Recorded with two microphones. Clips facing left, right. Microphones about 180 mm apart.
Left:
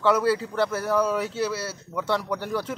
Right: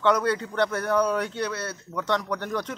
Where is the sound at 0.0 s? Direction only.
5° left (ahead or behind).